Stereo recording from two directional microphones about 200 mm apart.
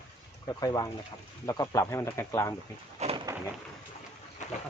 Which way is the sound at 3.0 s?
30° right (ahead or behind).